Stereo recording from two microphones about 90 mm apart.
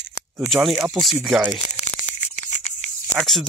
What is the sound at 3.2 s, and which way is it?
Speech, 5° left (ahead or behind).